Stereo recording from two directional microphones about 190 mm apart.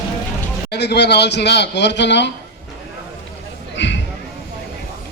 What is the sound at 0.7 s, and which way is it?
A man's voice, 60° left (ahead or behind).